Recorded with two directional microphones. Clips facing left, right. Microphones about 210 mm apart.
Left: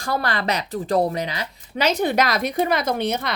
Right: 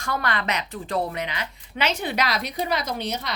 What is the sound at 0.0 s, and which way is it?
A woman's voice, 35° left (ahead or behind).